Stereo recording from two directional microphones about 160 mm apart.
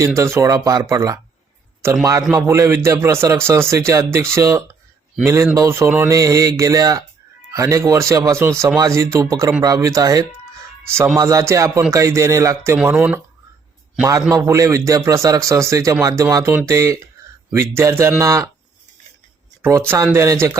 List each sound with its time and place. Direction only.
0.2 s a man's voice: 15° right (ahead or behind)
20.1 s speech: 15° right (ahead or behind)